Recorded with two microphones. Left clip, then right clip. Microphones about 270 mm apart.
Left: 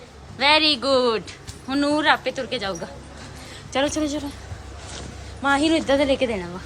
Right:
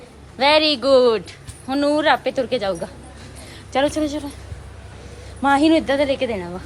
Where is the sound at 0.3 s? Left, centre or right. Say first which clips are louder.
Right 2 dB; centre.